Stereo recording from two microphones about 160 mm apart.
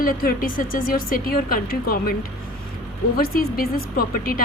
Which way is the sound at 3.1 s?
65° left (ahead or behind).